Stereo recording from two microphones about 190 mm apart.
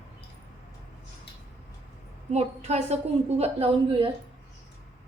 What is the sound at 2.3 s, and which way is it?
A woman's voice, 35° right (ahead or behind).